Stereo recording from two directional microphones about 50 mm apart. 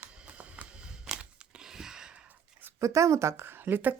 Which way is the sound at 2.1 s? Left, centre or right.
Right.